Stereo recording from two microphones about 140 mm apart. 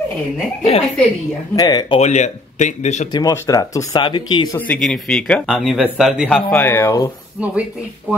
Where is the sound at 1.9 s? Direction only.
50° left (ahead or behind).